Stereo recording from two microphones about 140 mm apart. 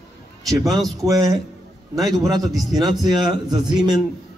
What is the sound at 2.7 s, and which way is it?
Speech, 30° right (ahead or behind).